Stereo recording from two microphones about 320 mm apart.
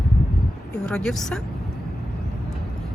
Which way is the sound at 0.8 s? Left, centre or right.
Centre.